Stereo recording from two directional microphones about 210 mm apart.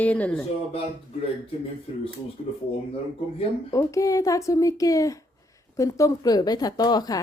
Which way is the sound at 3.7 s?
15° left (ahead or behind).